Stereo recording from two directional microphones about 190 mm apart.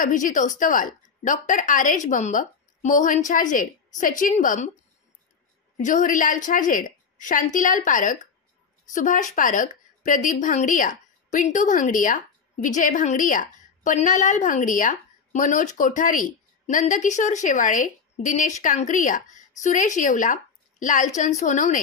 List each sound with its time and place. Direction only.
0.0 s a woman's voice: 40° left (ahead or behind)
5.8 s a woman's voice: 40° left (ahead or behind)